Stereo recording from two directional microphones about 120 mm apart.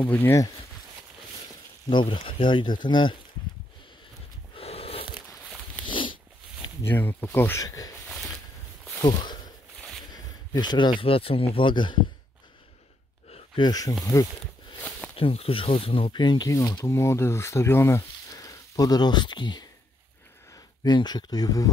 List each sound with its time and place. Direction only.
0.0 s speech: 10° left (ahead or behind)
1.9 s speech: 40° left (ahead or behind)
4.6 s a sound: 55° left (ahead or behind)
6.8 s speech: 15° left (ahead or behind)
9.0 s speech: 40° left (ahead or behind)
10.1 s a sound: 35° left (ahead or behind)
11.0 s speech: 50° left (ahead or behind)
13.6 s speech: 35° left (ahead or behind)
15.1 s speech: 50° left (ahead or behind); by 21.6 s 30° left (ahead or behind)